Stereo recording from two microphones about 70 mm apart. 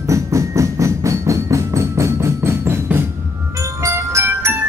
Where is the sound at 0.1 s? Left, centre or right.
Right.